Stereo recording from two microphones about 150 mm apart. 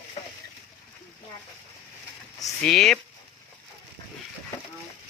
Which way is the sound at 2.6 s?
5° left (ahead or behind).